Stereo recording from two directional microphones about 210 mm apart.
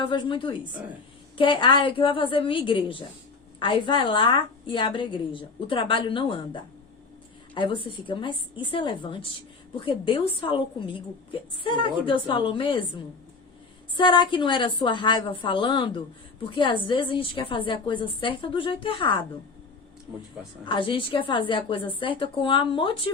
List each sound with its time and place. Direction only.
0.0 s a woman's voice: 25° left (ahead or behind)
13.9 s a woman's voice: 20° left (ahead or behind)
20.7 s a woman's voice: 25° left (ahead or behind)